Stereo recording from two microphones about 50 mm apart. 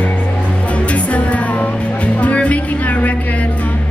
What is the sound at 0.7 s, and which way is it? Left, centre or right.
Music, left.